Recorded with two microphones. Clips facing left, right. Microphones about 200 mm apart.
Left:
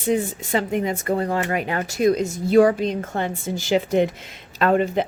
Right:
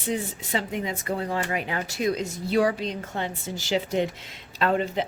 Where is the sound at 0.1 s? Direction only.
50° left (ahead or behind).